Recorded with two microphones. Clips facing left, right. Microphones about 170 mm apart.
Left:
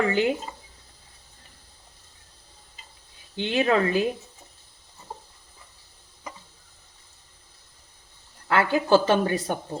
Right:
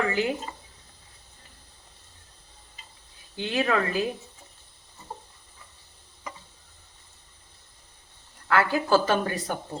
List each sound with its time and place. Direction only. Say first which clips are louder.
0.1 s speech: left 4 dB; 25° left (ahead or behind)
3.3 s speech: left 3 dB; 25° left (ahead or behind)
8.4 s speech: left 2 dB; 20° left (ahead or behind)